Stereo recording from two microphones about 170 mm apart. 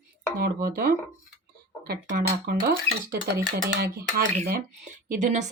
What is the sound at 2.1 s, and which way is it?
Speech, 60° right (ahead or behind).